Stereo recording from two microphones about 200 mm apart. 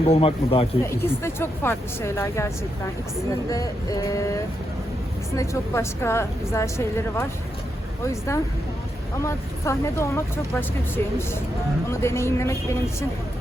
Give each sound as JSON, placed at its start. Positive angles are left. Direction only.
{"t": 0.1, "sound": "a man's voice", "side_deg": 30}
{"t": 0.9, "sound": "a woman's voice", "side_deg": 10}
{"t": 3.5, "sound": "a woman's voice", "side_deg": 15}